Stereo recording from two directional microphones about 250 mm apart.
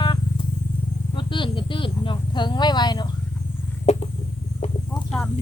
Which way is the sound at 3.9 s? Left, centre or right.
Left.